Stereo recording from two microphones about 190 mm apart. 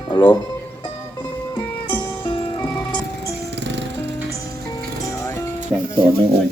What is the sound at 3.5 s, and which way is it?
Music, 70° right (ahead or behind).